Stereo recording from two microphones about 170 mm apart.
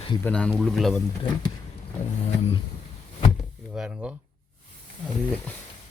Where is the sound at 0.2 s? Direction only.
10° left (ahead or behind).